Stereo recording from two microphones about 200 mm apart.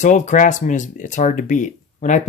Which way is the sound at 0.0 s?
40° left (ahead or behind).